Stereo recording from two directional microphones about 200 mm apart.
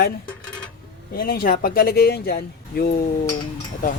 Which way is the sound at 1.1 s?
45° left (ahead or behind).